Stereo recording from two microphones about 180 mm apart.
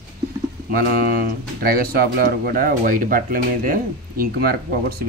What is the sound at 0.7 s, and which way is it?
Speech, 55° right (ahead or behind).